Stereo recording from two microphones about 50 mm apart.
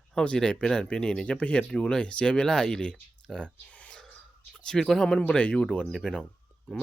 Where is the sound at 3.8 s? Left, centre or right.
Centre.